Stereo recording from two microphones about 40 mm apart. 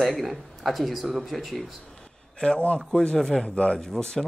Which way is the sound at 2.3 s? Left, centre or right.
Left.